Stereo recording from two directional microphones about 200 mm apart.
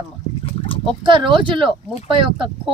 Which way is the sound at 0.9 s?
25° right (ahead or behind).